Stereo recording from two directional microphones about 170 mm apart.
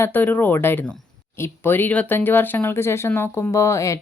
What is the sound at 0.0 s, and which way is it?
Speech, 10° left (ahead or behind).